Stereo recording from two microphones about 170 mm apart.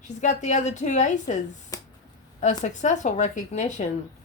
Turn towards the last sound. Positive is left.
turn(degrees=45)  # may be behind; listen again after turning